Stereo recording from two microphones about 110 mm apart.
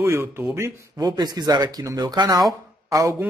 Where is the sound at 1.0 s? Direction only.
35° right (ahead or behind).